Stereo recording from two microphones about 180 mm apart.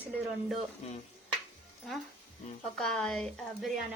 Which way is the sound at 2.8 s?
5° left (ahead or behind).